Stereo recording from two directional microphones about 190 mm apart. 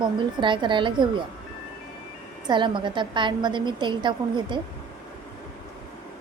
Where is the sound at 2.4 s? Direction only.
25° right (ahead or behind).